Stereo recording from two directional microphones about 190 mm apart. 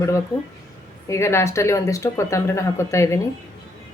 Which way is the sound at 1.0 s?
15° left (ahead or behind).